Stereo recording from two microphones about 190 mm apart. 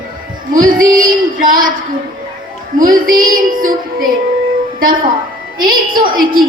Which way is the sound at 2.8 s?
45° right (ahead or behind).